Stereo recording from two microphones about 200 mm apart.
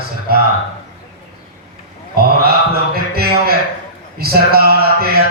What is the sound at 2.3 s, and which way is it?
Mantra, 50° right (ahead or behind).